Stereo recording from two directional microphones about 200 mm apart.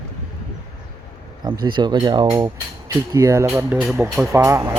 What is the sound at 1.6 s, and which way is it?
Speech, 25° right (ahead or behind).